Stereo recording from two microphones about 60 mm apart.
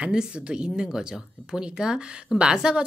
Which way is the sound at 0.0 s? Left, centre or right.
Centre.